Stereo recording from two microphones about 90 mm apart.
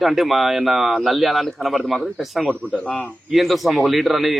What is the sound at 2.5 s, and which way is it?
Speech, 15° right (ahead or behind).